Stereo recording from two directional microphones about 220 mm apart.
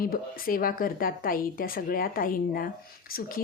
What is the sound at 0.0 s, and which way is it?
A woman's voice, 40° left (ahead or behind).